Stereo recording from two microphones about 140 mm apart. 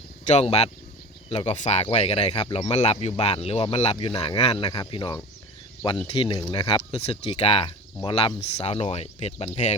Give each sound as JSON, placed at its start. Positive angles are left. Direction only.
{"t": 0.3, "sound": "speech", "side_deg": 50}
{"t": 6.9, "sound": "speech", "side_deg": 45}